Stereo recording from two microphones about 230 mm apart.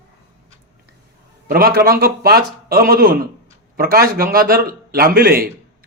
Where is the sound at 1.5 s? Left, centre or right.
Right.